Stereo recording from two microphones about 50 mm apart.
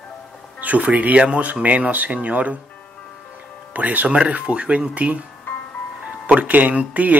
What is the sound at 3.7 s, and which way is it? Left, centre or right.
Speech, right.